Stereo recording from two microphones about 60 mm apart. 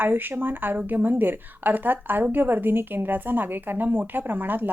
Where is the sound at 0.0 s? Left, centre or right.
Right.